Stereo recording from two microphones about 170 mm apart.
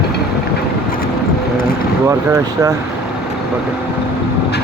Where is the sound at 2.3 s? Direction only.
15° right (ahead or behind).